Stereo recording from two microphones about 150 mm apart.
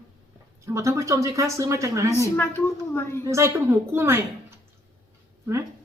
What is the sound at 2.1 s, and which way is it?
A woman's voice, 15° left (ahead or behind).